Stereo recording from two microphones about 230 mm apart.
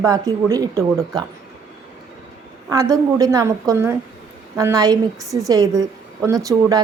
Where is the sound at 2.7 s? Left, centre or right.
Centre.